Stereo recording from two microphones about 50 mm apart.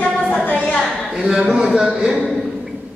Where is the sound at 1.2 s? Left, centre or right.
Centre.